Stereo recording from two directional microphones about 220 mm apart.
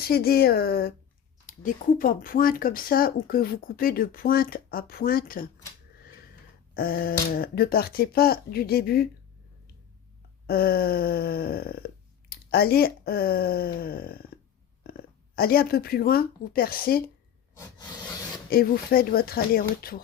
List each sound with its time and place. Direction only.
0.0 s speech: 45° left (ahead or behind)
6.7 s speech: 40° left (ahead or behind)
10.4 s speech: 45° left (ahead or behind)
14.8 s a sound: 45° left (ahead or behind)
15.4 s speech: 45° left (ahead or behind)
18.5 s speech: 45° left (ahead or behind)